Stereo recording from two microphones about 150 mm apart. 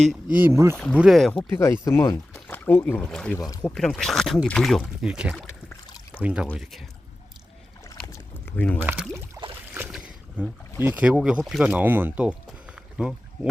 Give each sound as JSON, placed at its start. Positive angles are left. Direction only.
{"t": 0.1, "sound": "speech", "side_deg": -10}
{"t": 0.9, "sound": "speech", "side_deg": -5}
{"t": 1.3, "sound": "speech", "side_deg": 10}
{"t": 2.3, "sound": "a sound", "side_deg": 10}
{"t": 3.0, "sound": "speech", "side_deg": 5}
{"t": 3.3, "sound": "speech", "side_deg": 25}
{"t": 3.6, "sound": "speech", "side_deg": 5}
{"t": 8.0, "sound": "a sound", "side_deg": 15}
{"t": 8.9, "sound": "a sound", "side_deg": -15}
{"t": 9.9, "sound": "speech", "side_deg": -5}